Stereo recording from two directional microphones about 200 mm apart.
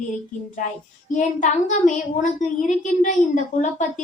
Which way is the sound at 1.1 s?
35° left (ahead or behind).